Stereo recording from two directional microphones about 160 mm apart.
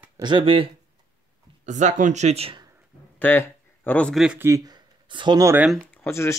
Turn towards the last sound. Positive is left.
turn(degrees=15)  # may be behind; listen again after turning